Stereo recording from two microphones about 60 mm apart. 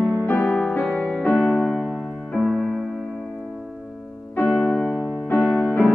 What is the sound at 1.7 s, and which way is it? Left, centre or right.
Music, centre.